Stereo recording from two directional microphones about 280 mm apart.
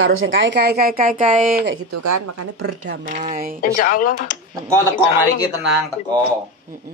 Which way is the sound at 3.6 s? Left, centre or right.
Left.